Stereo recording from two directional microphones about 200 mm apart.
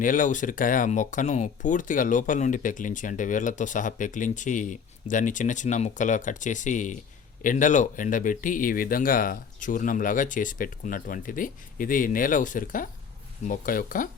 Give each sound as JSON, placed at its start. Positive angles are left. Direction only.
{"t": 0.0, "sound": "speech", "side_deg": 40}